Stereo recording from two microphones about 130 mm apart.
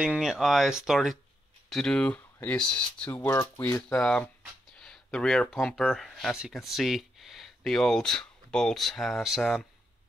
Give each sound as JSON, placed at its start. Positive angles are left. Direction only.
{"t": 0.0, "sound": "speech", "side_deg": -5}
{"t": 3.9, "sound": "speech", "side_deg": 5}